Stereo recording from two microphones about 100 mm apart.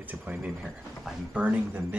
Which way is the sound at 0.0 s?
15° right (ahead or behind).